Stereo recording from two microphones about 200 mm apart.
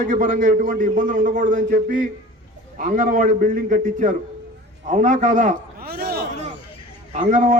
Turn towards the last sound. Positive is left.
turn(degrees=-40)  # may be behind; listen again after turning